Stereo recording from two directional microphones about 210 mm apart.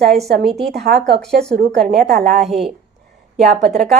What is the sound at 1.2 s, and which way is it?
Speech, centre (ahead or behind).